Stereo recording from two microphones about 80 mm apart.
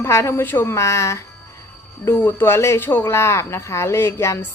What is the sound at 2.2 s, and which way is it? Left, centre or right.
Speech, left.